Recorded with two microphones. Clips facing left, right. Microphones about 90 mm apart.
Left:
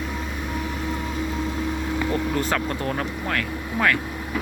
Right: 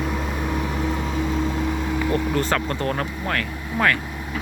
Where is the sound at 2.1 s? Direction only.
5° left (ahead or behind).